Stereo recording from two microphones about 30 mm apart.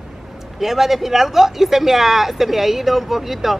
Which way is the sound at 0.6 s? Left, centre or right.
Centre.